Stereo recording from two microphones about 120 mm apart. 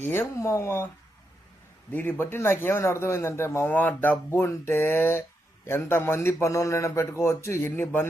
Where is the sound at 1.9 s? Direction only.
15° left (ahead or behind).